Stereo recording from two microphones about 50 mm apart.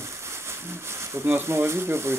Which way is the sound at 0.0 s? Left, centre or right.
Right.